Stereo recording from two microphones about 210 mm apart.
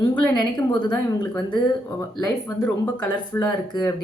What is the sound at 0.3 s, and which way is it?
A woman's voice, 20° left (ahead or behind).